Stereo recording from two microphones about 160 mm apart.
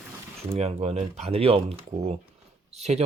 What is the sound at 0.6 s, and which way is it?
Speech, 40° right (ahead or behind).